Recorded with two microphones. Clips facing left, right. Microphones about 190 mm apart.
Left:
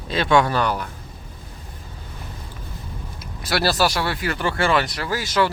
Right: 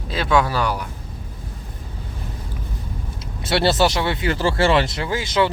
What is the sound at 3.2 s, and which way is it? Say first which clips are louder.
Speech: right 3 dB; 25° right (ahead or behind).